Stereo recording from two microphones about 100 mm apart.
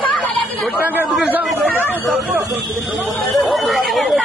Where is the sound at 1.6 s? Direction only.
15° left (ahead or behind).